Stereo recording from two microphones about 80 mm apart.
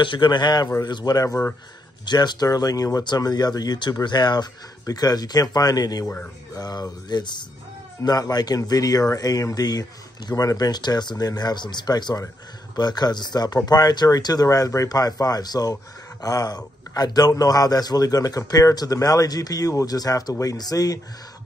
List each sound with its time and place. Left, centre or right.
0.0 s a man's voice: left
2.0 s speech: left
2.4 s speech: left
4.8 s speech: left
8.0 s speech: left
10.3 s speech: left